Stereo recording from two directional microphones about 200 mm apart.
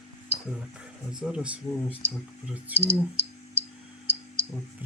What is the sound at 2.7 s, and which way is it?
Speech, 55° right (ahead or behind).